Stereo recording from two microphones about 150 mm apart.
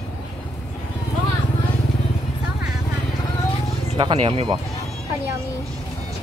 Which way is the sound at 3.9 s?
35° right (ahead or behind).